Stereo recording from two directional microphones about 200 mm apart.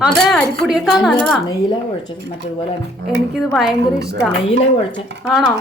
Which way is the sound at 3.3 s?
Centre (ahead or behind).